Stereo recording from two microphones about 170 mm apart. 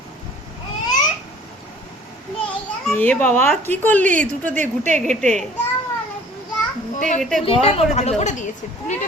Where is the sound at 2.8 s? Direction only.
10° left (ahead or behind).